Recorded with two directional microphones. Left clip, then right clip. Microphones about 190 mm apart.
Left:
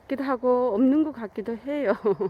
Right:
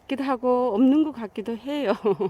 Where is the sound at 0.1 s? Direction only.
30° right (ahead or behind).